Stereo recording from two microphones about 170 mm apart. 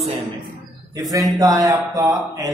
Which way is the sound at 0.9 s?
20° right (ahead or behind).